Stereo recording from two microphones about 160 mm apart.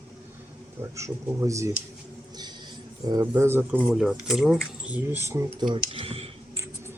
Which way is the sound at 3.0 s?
20° right (ahead or behind).